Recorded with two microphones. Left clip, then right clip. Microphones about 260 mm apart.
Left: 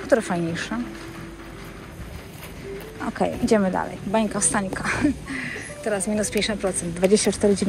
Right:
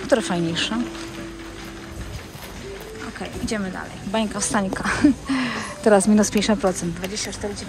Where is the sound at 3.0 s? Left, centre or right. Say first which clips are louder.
Left 9 dB; centre.